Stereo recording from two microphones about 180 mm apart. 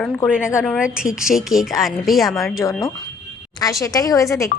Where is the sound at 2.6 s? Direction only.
15° left (ahead or behind).